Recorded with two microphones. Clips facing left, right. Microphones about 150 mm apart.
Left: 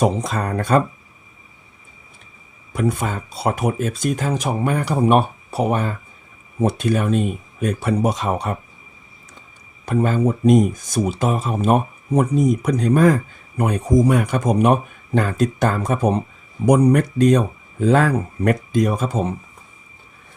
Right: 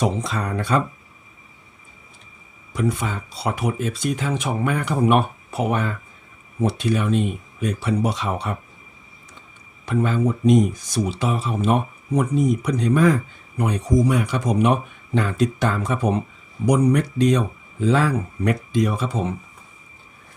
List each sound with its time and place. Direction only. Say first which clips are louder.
0.2 s speech: left 3 dB; 45° left (ahead or behind)
2.7 s speech: left 2 dB; 45° left (ahead or behind)
6.6 s speech: left 2 dB; 45° left (ahead or behind)
9.8 s speech: left 3 dB; 45° left (ahead or behind)